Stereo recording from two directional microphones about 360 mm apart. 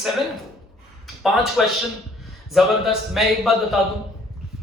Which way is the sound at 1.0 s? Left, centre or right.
Centre.